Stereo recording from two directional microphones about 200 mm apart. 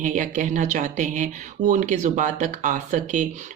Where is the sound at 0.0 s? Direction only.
40° right (ahead or behind).